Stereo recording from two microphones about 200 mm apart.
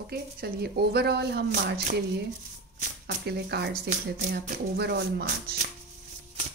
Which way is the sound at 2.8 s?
50° right (ahead or behind).